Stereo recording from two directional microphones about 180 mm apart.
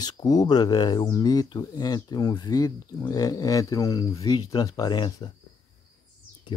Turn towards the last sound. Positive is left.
turn(degrees=25)  # may be behind; listen again after turning